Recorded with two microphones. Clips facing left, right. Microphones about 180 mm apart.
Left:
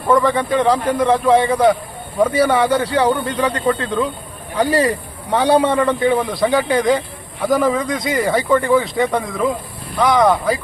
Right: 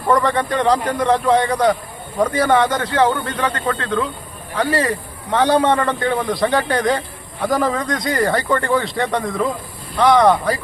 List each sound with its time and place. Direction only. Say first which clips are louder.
0.1 s a man's voice: left 2 dB; 5° left (ahead or behind)